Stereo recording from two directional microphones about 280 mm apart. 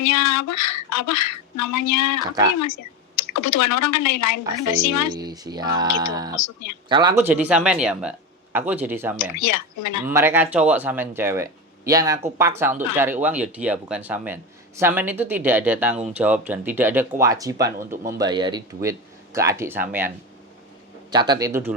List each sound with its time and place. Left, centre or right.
0.0 s speech: left
5.1 s speech: centre
9.5 s speech: left
10.1 s speech: centre